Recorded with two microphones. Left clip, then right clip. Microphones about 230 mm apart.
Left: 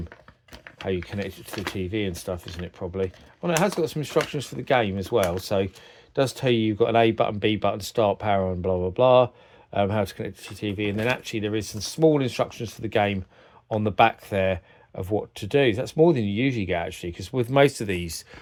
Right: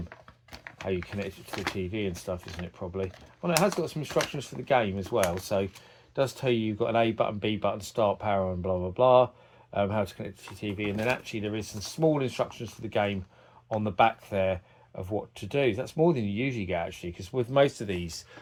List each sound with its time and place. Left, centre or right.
1.7 s speech: left